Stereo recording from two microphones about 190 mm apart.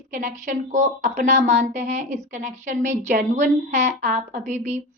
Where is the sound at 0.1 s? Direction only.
40° right (ahead or behind).